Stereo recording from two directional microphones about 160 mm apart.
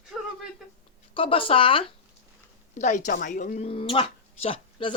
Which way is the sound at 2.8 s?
50° left (ahead or behind).